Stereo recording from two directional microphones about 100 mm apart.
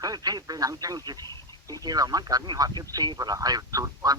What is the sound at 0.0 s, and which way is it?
Speech, 40° right (ahead or behind).